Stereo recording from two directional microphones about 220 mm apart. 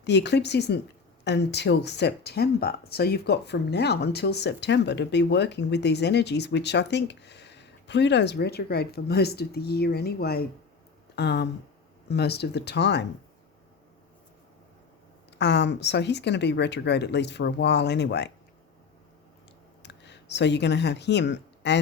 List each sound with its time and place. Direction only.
0.0 s speech: 50° left (ahead or behind)
15.3 s speech: 50° left (ahead or behind)
19.8 s speech: 50° left (ahead or behind)